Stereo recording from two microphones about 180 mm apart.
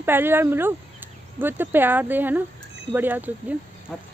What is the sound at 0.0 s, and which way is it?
Speech, 10° right (ahead or behind).